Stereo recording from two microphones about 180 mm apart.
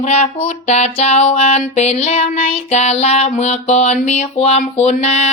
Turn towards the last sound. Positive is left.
turn(degrees=40)  # may be behind; listen again after turning